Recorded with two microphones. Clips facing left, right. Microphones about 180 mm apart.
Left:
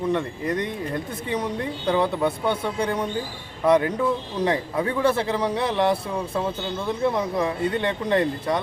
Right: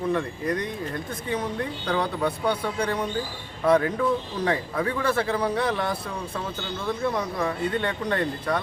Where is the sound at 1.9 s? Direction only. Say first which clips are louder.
Left 4 dB; 25° left (ahead or behind).